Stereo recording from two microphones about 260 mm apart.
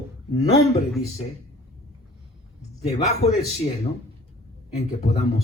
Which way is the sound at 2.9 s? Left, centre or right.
Left.